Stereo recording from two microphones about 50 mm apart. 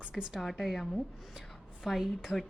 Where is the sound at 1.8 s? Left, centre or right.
Centre.